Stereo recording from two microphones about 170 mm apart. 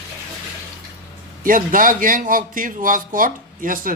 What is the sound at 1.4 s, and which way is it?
A man's voice, 55° right (ahead or behind).